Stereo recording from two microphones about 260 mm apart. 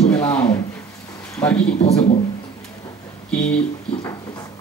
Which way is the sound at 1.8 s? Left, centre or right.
Left.